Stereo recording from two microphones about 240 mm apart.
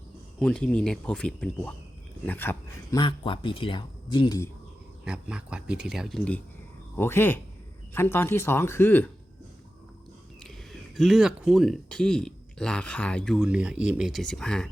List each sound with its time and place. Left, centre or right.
0.3 s speech: centre
5.0 s speech: centre
10.4 s speech: centre